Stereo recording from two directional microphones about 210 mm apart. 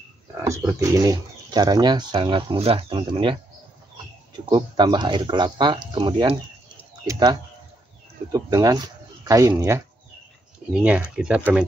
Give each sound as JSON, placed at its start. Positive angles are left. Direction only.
{"t": 0.4, "sound": "speech", "side_deg": -15}
{"t": 4.5, "sound": "speech", "side_deg": -20}
{"t": 10.7, "sound": "speech", "side_deg": -5}